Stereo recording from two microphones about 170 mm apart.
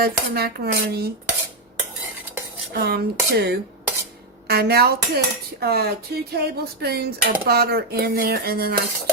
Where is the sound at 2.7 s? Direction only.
65° right (ahead or behind).